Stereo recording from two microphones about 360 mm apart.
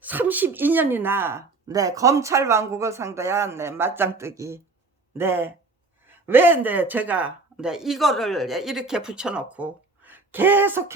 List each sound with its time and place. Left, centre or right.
0.0 s speech: centre